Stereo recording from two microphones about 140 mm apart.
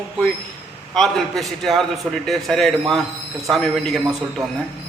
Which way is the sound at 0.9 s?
5° left (ahead or behind).